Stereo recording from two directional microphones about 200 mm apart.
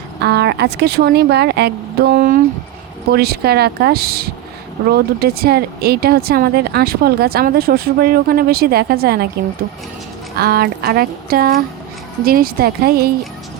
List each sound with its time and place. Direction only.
0.2 s speech: 55° right (ahead or behind)
10.3 s speech: 50° right (ahead or behind)